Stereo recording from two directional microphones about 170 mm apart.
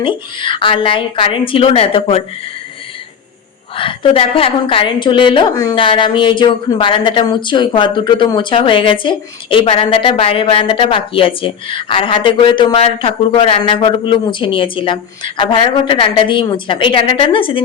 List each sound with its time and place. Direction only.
0.0 s a woman's voice: 30° left (ahead or behind)
3.8 s a woman's voice: 30° left (ahead or behind)